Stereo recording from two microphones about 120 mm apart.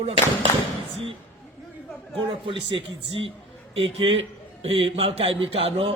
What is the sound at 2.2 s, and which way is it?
A man's voice, 45° right (ahead or behind).